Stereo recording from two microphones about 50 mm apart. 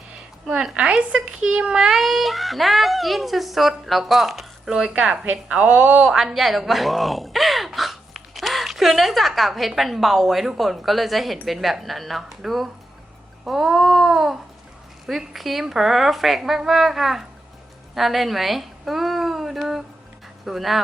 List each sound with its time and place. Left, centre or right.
0.4 s speech: centre
6.1 s a woman's voice: centre